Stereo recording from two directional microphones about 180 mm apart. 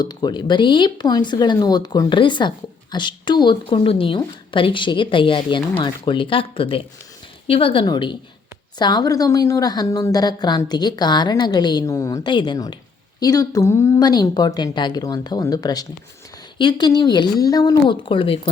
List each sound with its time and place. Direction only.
0.0 s a woman's voice: 25° left (ahead or behind)